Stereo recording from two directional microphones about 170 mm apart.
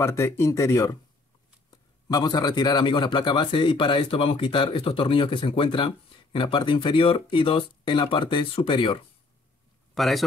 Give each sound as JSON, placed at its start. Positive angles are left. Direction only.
{"t": 0.0, "sound": "a man's voice", "side_deg": 15}
{"t": 9.9, "sound": "a man's voice", "side_deg": 0}